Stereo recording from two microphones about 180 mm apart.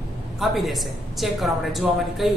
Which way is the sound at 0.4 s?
Centre (ahead or behind).